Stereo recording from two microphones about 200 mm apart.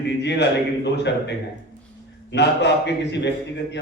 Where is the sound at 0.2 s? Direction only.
60° left (ahead or behind).